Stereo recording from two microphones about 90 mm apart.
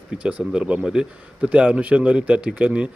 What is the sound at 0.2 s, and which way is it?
Speech, 10° right (ahead or behind).